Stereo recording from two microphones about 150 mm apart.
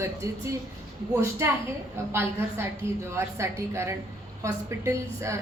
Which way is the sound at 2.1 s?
15° right (ahead or behind).